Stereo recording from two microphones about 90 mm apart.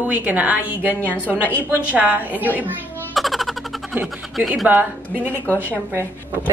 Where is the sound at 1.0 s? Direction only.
15° left (ahead or behind).